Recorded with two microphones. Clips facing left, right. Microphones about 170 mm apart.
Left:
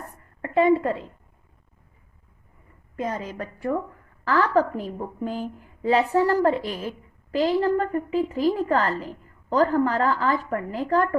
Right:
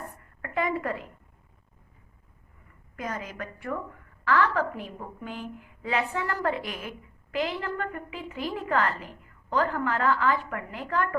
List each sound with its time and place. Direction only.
0.4 s a woman's voice: 30° left (ahead or behind)
2.9 s a woman's voice: 30° left (ahead or behind)